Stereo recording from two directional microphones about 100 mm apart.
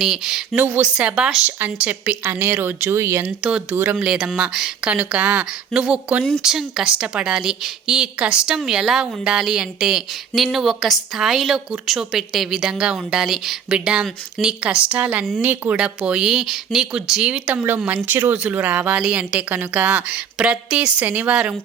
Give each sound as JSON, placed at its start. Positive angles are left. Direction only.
{"t": 0.0, "sound": "speech", "side_deg": -5}
{"t": 0.5, "sound": "a woman's voice", "side_deg": -15}
{"t": 3.4, "sound": "a woman's voice", "side_deg": -10}
{"t": 16.0, "sound": "a woman's voice", "side_deg": -5}